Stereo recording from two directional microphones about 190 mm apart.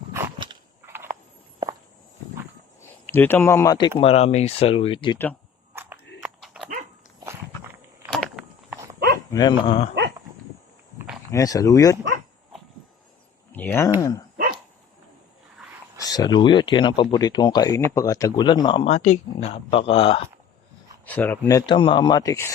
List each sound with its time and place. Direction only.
0.1 s a sound: 25° right (ahead or behind)
3.1 s speech: 10° left (ahead or behind); by 5.1 s 25° left (ahead or behind)
5.1 s speech: 10° left (ahead or behind)
5.7 s a sound: 10° right (ahead or behind)
8.1 s a sound: centre (ahead or behind)
9.3 s speech: 25° left (ahead or behind)
11.3 s speech: 15° left (ahead or behind)
13.5 s speech: 10° left (ahead or behind)
16.0 s speech: 20° left (ahead or behind)
21.0 s speech: 10° left (ahead or behind)
21.7 s speech: 25° left (ahead or behind)